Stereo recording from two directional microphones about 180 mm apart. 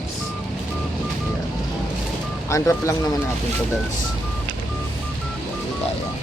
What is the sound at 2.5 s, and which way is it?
Speech, 15° left (ahead or behind).